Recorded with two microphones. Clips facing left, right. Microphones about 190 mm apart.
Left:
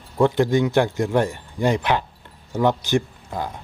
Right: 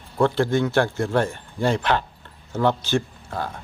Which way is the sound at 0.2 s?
15° left (ahead or behind).